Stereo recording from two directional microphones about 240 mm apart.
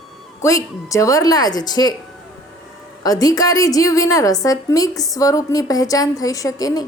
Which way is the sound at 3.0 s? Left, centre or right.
Centre.